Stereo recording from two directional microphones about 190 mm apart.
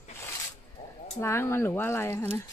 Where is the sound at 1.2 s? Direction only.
15° left (ahead or behind).